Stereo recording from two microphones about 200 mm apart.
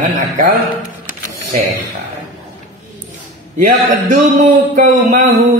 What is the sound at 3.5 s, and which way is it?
A man's voice, 40° right (ahead or behind).